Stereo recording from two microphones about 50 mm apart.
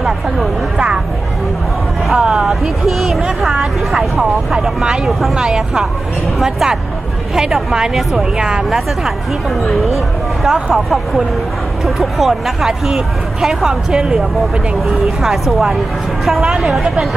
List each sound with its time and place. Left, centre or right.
0.7 s speech: centre
2.1 s speech: centre
5.3 s speech: centre